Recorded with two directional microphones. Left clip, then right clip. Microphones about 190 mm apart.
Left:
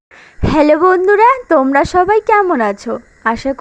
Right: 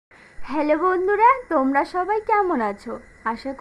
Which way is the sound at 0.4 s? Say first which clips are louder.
Left 11 dB; 30° left (ahead or behind).